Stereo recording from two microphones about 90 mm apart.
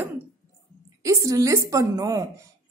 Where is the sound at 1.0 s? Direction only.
40° right (ahead or behind).